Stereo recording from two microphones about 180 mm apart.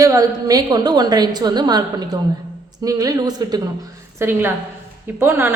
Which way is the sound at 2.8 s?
20° right (ahead or behind).